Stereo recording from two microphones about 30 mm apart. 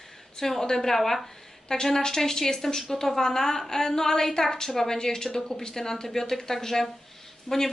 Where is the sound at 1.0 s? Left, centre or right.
Centre.